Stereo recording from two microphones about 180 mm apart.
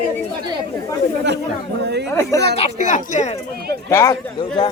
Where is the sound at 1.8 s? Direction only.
70° right (ahead or behind).